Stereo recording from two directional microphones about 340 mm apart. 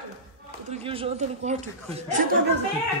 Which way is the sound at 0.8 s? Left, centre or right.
Centre.